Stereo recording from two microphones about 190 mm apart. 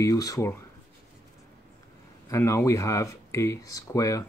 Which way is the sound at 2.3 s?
15° left (ahead or behind).